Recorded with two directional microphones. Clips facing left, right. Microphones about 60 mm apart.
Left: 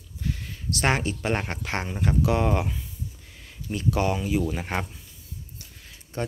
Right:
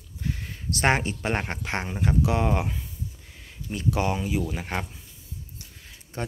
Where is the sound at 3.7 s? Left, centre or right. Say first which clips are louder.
Left 1 dB; centre.